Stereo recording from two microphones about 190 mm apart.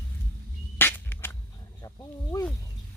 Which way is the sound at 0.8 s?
10° left (ahead or behind).